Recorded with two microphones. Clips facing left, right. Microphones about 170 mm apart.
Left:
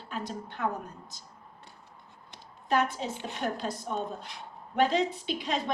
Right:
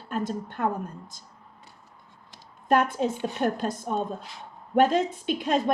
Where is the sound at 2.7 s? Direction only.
50° right (ahead or behind).